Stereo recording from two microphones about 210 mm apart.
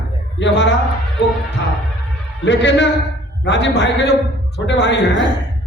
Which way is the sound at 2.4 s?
55° left (ahead or behind).